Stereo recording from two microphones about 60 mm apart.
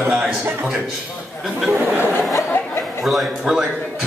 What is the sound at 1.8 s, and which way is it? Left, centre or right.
Speech, right.